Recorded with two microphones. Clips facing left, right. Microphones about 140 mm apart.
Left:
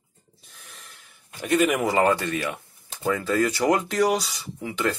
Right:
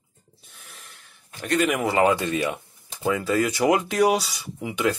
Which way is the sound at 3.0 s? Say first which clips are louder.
Even; 5° right (ahead or behind).